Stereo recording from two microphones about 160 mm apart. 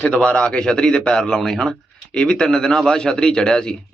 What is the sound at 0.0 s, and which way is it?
Speech, 10° left (ahead or behind).